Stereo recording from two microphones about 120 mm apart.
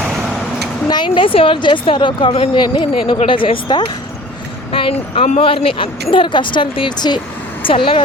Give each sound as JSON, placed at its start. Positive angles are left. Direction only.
{"t": 0.9, "sound": "speech", "side_deg": 40}